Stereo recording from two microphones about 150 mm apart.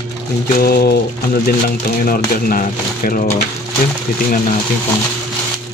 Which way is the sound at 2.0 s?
75° left (ahead or behind).